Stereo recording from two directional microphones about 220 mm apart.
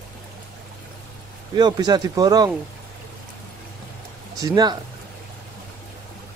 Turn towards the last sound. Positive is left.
turn(degrees=-20)  # may be behind; listen again after turning